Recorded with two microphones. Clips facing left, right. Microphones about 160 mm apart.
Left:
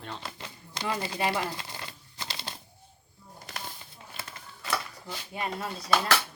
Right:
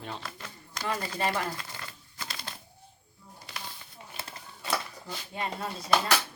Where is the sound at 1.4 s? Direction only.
25° left (ahead or behind).